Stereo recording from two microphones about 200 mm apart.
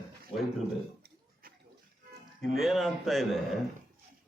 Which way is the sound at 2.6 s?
Centre (ahead or behind).